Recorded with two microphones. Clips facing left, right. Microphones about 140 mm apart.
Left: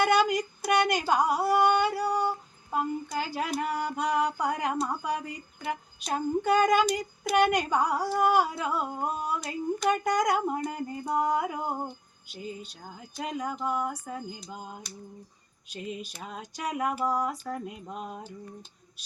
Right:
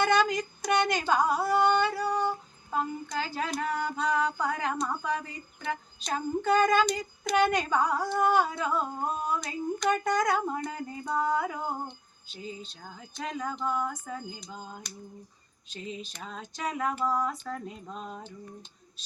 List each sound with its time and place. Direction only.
0.0 s speech: 10° left (ahead or behind)
11.9 s a sound: 10° left (ahead or behind)
12.6 s speech: 10° left (ahead or behind)
16.0 s speech: 10° left (ahead or behind)